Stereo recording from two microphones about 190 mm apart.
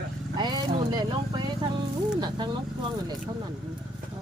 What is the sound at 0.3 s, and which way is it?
Vehicle, 20° right (ahead or behind).